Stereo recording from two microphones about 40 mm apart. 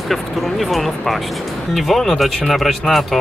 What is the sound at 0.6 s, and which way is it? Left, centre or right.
Speech, centre.